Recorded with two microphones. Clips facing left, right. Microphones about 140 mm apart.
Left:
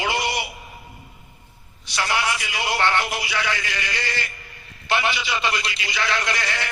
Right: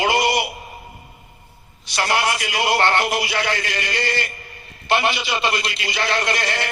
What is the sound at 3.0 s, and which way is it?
Speech, 70° right (ahead or behind).